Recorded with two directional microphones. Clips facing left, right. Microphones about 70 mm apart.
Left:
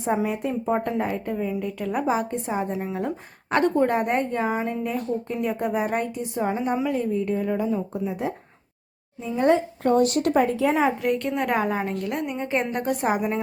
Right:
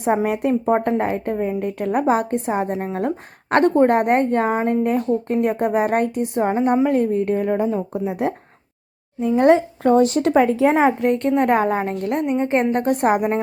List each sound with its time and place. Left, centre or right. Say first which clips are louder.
0.0 s a woman's voice: right 5 dB; right
6.8 s a woman's voice: right 6 dB; right
10.2 s speech: right 5 dB; right
11.0 s a woman's voice: right 6 dB; right